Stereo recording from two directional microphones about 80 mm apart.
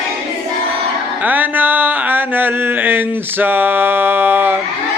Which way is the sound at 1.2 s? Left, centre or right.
Right.